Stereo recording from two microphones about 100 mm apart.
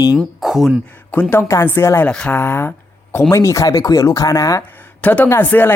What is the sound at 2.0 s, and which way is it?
Speech, 10° left (ahead or behind).